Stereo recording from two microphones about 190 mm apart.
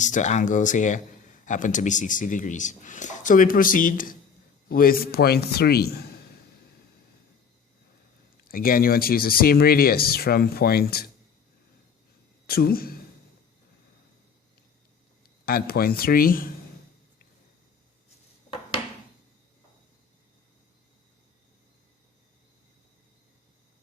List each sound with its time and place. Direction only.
0.0 s a man's voice: 40° left (ahead or behind); by 6.1 s 55° left (ahead or behind)
8.4 s a man's voice: 50° left (ahead or behind)
12.5 s a man's voice: 55° left (ahead or behind)
15.4 s a man's voice: 55° left (ahead or behind)